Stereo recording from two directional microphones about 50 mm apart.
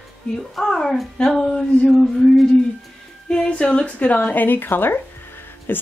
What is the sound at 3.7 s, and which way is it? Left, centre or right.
Speech, left.